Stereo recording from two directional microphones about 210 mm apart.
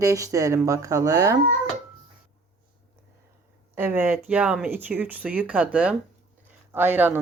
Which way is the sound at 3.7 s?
10° right (ahead or behind).